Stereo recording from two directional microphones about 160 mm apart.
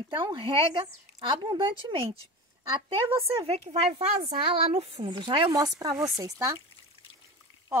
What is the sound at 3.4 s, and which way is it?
A woman's voice, 40° right (ahead or behind).